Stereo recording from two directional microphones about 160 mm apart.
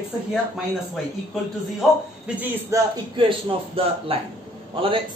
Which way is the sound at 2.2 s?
10° right (ahead or behind).